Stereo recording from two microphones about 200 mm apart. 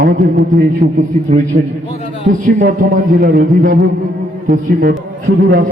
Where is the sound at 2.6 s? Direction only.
40° right (ahead or behind).